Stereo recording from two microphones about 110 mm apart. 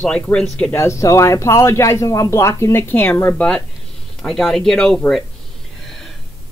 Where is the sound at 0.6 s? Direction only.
20° left (ahead or behind).